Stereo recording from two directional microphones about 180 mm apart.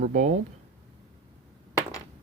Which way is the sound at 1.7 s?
20° left (ahead or behind).